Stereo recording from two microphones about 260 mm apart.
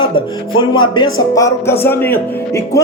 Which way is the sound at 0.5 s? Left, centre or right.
Centre.